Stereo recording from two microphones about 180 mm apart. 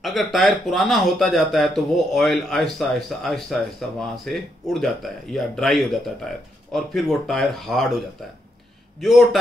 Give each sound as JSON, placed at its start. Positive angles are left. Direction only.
{"t": 0.0, "sound": "speech", "side_deg": 0}
{"t": 9.0, "sound": "speech", "side_deg": 0}